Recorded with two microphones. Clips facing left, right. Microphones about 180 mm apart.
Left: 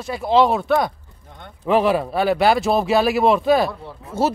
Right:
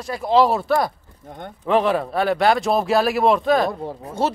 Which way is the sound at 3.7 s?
40° right (ahead or behind).